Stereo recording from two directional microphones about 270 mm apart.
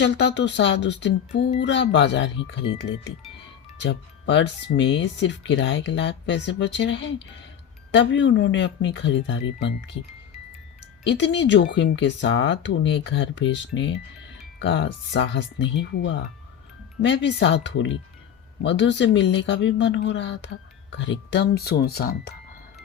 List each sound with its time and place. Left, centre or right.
0.0 s speech: left
3.8 s speech: left
11.0 s speech: left